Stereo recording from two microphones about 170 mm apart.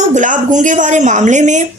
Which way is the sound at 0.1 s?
45° right (ahead or behind).